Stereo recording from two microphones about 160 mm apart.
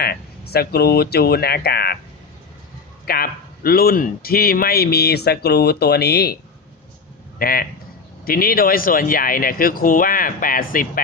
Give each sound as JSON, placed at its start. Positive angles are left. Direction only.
{"t": 0.0, "sound": "speech", "side_deg": 80}
{"t": 3.1, "sound": "speech", "side_deg": 70}
{"t": 7.3, "sound": "speech", "side_deg": 65}